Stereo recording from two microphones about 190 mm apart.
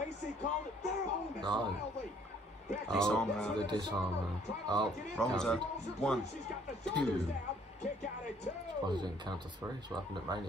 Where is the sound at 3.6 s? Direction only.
25° right (ahead or behind).